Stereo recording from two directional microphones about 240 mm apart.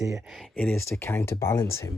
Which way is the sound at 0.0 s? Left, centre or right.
Centre.